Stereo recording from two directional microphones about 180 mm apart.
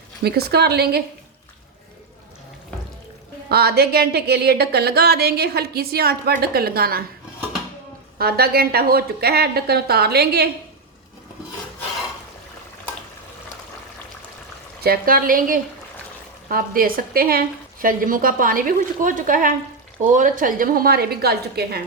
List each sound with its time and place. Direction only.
0.2 s a woman's voice: 60° right (ahead or behind)
3.5 s a woman's voice: 60° right (ahead or behind)
8.2 s a woman's voice: 60° right (ahead or behind)
14.8 s a woman's voice: 55° right (ahead or behind)